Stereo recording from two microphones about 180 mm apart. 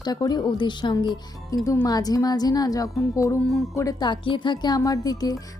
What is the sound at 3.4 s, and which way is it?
Speech, centre (ahead or behind).